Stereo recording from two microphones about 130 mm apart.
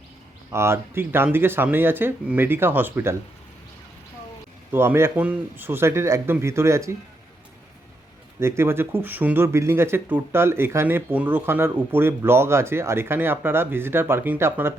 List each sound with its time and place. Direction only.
0.5 s speech: 20° right (ahead or behind)
4.7 s speech: 20° right (ahead or behind)
8.4 s speech: 20° right (ahead or behind)